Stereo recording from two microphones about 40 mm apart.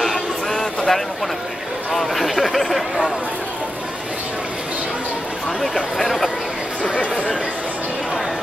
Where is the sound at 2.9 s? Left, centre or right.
Right.